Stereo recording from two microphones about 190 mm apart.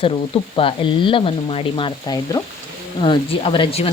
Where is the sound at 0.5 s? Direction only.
25° left (ahead or behind).